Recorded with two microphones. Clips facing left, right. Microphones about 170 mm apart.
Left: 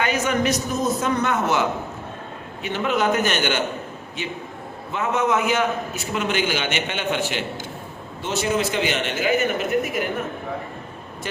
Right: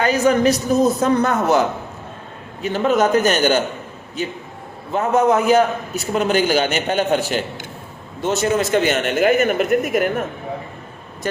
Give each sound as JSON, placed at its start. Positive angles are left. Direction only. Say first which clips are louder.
{"t": 0.0, "sound": "a man's voice", "louder": "right 6 dB", "side_deg": -35}
{"t": 4.9, "sound": "a man's voice", "louder": "right 6 dB", "side_deg": -35}